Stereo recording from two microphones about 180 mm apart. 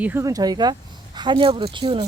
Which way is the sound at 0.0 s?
15° right (ahead or behind).